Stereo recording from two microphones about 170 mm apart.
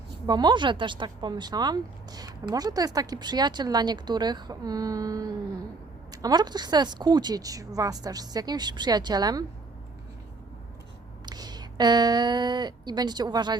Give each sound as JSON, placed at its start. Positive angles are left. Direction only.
{"t": 0.3, "sound": "speech", "side_deg": -25}
{"t": 11.3, "sound": "speech", "side_deg": -25}